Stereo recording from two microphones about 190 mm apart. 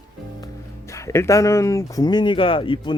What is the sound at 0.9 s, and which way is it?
Speech, 15° left (ahead or behind).